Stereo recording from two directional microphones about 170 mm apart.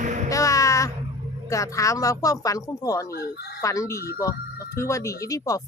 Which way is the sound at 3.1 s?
65° left (ahead or behind).